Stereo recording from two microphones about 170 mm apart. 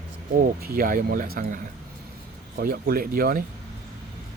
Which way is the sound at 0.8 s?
55° right (ahead or behind).